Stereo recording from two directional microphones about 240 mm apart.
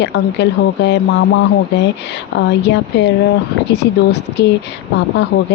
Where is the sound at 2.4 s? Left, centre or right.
Left.